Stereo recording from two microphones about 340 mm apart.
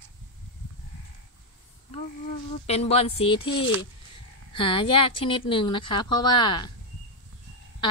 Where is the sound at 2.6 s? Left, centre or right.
Centre.